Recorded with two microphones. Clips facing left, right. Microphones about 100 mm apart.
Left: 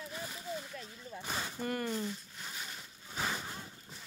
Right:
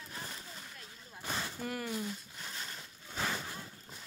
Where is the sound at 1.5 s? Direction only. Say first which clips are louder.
Left 2 dB; 5° right (ahead or behind).